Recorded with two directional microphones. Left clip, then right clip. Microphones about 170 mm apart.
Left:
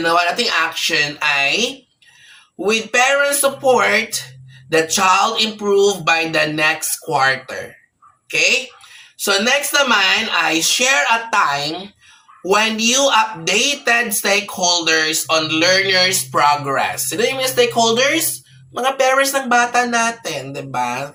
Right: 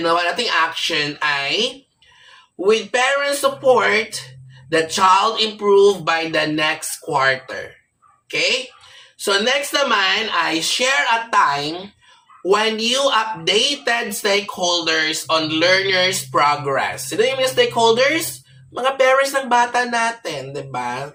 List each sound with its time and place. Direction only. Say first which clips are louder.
0.0 s speech: left 2 dB; 15° left (ahead or behind)
2.6 s speech: left 1 dB; 15° left (ahead or behind)
4.7 s speech: even; 20° left (ahead or behind)
9.2 s speech: left 2 dB; 15° left (ahead or behind)